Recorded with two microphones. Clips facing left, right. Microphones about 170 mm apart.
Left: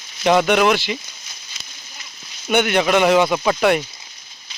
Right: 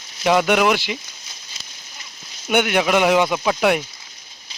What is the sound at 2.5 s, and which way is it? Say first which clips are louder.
Speech: left 1 dB; 10° right (ahead or behind).